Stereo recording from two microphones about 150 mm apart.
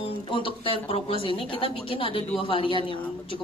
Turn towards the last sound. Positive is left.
turn(degrees=35)  # may be behind; listen again after turning